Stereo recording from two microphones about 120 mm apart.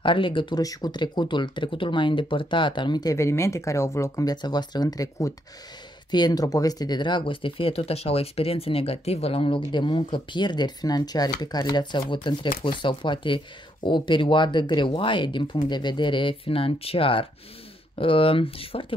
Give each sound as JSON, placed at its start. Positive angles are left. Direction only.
{"t": 0.0, "sound": "speech", "side_deg": 45}
{"t": 0.6, "sound": "speech", "side_deg": 30}